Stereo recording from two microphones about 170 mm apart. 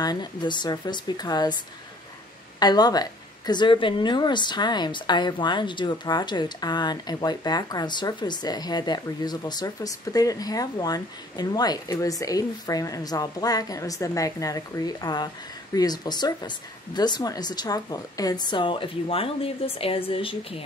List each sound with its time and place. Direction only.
0.0 s a woman's voice: 25° left (ahead or behind)
2.6 s a woman's voice: 25° left (ahead or behind)